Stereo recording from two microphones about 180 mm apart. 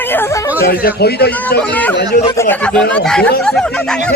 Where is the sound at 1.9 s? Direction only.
65° left (ahead or behind).